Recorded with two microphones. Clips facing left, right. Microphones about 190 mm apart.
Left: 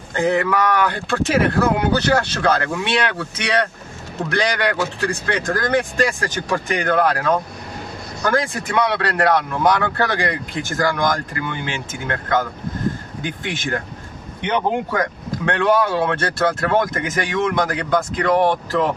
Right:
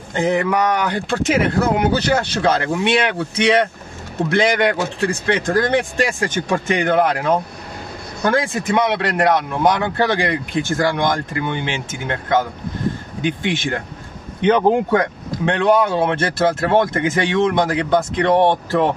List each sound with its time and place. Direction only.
0.1 s speech: 20° right (ahead or behind)